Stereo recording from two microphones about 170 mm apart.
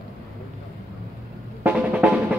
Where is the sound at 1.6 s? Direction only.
10° right (ahead or behind).